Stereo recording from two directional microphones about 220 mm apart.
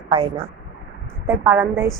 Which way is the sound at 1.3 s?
10° right (ahead or behind).